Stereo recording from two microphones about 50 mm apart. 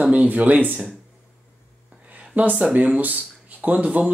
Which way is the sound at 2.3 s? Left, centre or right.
Right.